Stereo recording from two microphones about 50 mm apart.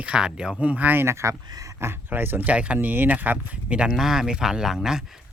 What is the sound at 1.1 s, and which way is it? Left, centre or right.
Speech, right.